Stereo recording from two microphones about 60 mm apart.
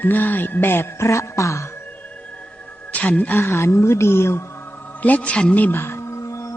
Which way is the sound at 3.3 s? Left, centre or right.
Left.